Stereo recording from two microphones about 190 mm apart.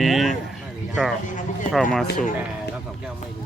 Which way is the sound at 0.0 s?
Centre (ahead or behind).